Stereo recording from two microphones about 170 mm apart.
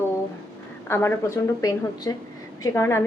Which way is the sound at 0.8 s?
15° left (ahead or behind).